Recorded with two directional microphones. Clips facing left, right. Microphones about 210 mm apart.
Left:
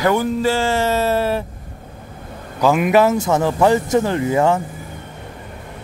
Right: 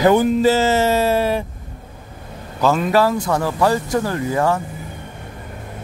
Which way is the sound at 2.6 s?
15° left (ahead or behind).